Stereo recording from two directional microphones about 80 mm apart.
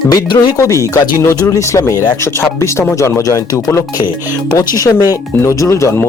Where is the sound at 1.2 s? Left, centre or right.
Left.